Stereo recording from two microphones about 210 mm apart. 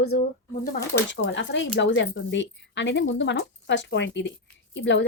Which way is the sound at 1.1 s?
60° left (ahead or behind).